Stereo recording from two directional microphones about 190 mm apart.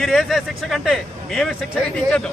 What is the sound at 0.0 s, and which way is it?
A man's voice, centre (ahead or behind).